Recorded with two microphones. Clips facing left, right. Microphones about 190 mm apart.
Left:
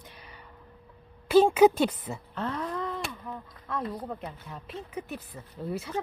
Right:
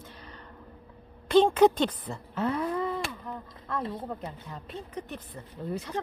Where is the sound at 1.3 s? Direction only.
5° left (ahead or behind).